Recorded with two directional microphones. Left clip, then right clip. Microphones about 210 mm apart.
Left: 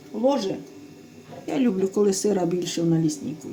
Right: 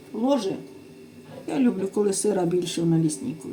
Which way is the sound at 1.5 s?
20° left (ahead or behind).